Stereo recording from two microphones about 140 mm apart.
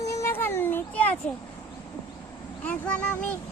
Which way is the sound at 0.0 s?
20° left (ahead or behind).